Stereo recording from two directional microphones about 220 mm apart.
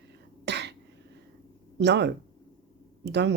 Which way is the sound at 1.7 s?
50° right (ahead or behind).